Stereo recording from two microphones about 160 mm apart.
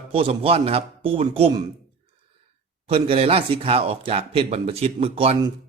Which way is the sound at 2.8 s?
35° right (ahead or behind).